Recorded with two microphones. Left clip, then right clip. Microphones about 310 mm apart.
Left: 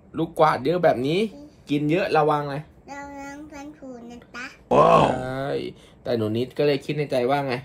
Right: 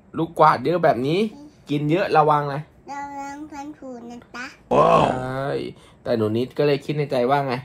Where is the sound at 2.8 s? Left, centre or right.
Centre.